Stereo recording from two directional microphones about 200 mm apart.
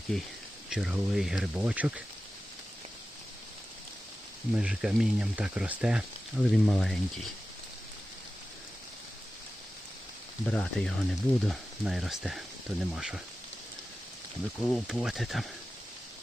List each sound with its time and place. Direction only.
0.1 s speech: 5° left (ahead or behind)
4.5 s speech: 5° right (ahead or behind)
10.4 s speech: 5° left (ahead or behind)
14.6 s speech: centre (ahead or behind)